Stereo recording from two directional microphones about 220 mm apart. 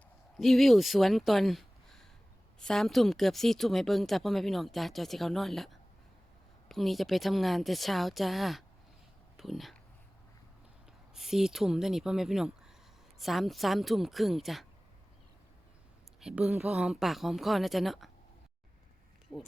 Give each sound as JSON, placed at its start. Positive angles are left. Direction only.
{"t": 0.3, "sound": "a woman's voice", "side_deg": 0}
{"t": 11.1, "sound": "a woman's voice", "side_deg": 0}
{"t": 16.2, "sound": "a woman's voice", "side_deg": -5}